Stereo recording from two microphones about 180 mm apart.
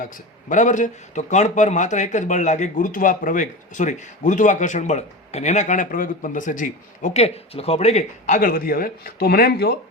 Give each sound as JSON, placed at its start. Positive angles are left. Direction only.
{"t": 0.0, "sound": "a man's voice", "side_deg": 45}
{"t": 8.4, "sound": "speech", "side_deg": 55}